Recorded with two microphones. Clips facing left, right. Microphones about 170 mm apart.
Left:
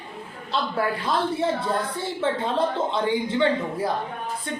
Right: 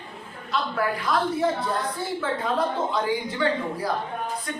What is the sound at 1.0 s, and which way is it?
A man's voice, 25° left (ahead or behind).